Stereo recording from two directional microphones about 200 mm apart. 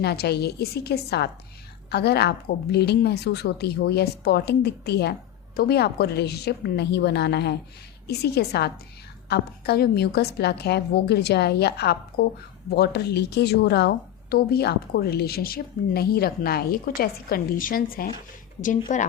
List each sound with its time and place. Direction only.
0.0 s a woman's voice: 55° left (ahead or behind); by 19.1 s 40° left (ahead or behind)